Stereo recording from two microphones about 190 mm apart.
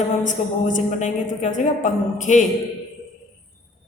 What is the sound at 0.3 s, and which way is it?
A woman's voice, 40° left (ahead or behind).